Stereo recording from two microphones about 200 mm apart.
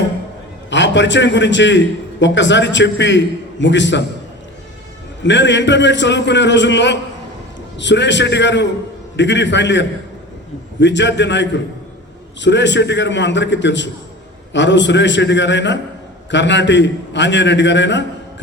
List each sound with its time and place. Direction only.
0.7 s a man's voice: 65° left (ahead or behind)
5.2 s a man's voice: 65° left (ahead or behind)